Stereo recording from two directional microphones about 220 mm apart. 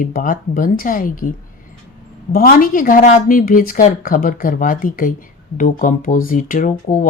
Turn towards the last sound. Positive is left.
turn(degrees=35)  # may be behind; listen again after turning